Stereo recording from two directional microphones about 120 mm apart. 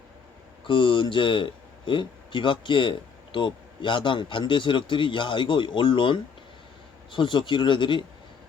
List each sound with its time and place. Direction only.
0.7 s speech: 45° left (ahead or behind)